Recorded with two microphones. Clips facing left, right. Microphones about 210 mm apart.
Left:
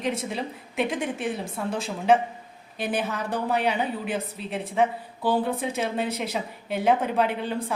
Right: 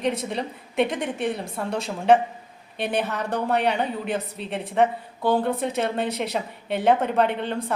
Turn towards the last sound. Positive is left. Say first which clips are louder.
# right 2 dB
turn(degrees=5)  # may be behind; listen again after turning